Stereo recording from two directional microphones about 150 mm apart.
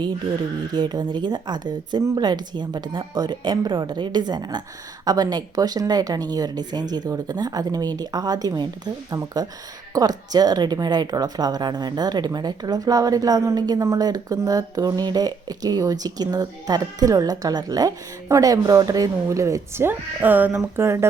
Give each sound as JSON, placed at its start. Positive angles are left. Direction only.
{"t": 0.7, "sound": "a woman's voice", "side_deg": -30}